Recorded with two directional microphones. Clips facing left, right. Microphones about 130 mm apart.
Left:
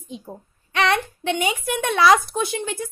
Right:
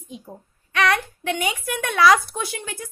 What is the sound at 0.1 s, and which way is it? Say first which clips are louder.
A woman's voice: left 3 dB; 25° left (ahead or behind).